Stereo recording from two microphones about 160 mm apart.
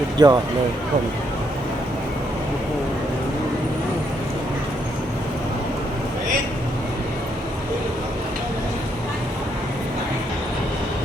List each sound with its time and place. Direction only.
0.2 s speech: 25° right (ahead or behind)